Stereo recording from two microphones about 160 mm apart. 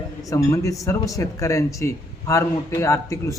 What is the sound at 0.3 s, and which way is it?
A man's voice, 20° left (ahead or behind).